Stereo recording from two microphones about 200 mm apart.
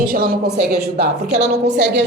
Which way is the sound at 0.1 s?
50° right (ahead or behind).